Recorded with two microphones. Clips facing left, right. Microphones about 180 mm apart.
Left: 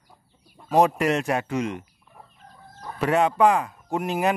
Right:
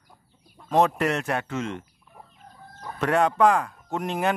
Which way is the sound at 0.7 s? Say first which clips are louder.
Left 2 dB; 10° left (ahead or behind).